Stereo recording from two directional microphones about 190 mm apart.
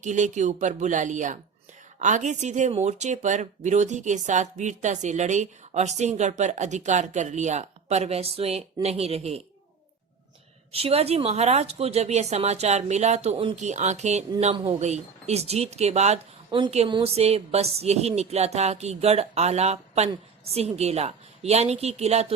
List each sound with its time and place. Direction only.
0.0 s speech: 40° right (ahead or behind)
10.7 s speech: 30° right (ahead or behind)